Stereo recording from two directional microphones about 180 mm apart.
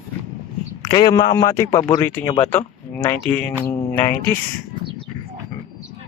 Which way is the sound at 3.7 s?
15° left (ahead or behind).